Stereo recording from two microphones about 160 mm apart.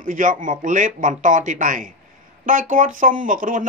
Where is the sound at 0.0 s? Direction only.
55° right (ahead or behind).